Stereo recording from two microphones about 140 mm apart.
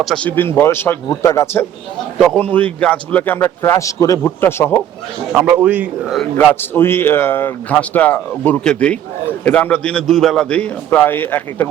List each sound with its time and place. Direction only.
0.0 s speech: centre (ahead or behind)
0.3 s a man's voice: 15° left (ahead or behind)
2.1 s a man's voice: 5° left (ahead or behind)
5.3 s a man's voice: centre (ahead or behind)
6.3 s a man's voice: 10° left (ahead or behind)